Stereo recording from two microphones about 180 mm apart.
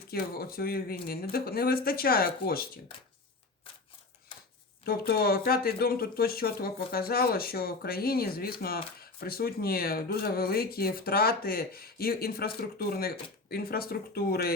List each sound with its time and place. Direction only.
0.1 s speech: 60° left (ahead or behind)
4.9 s speech: 55° left (ahead or behind)